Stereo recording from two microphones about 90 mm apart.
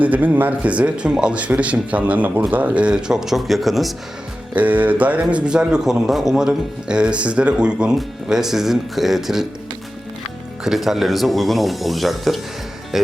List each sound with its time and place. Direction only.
0.0 s speech: 15° right (ahead or behind); by 3.9 s centre (ahead or behind)
4.5 s speech: 20° right (ahead or behind)
10.6 s speech: 5° right (ahead or behind)